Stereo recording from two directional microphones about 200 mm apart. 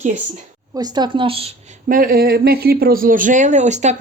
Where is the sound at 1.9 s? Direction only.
45° right (ahead or behind).